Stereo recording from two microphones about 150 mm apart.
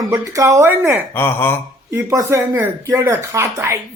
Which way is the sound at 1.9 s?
20° right (ahead or behind).